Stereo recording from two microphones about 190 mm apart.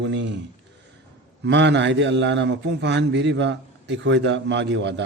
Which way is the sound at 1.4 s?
65° right (ahead or behind).